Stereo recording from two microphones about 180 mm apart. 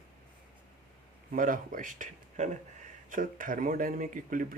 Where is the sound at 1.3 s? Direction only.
50° right (ahead or behind).